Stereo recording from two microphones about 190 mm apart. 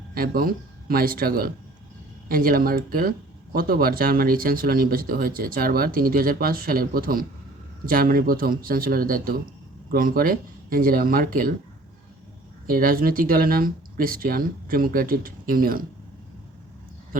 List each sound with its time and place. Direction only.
0.1 s speech: 50° right (ahead or behind)
12.6 s speech: 50° right (ahead or behind)